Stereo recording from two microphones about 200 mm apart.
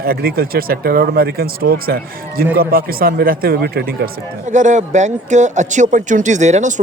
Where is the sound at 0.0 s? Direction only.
50° right (ahead or behind).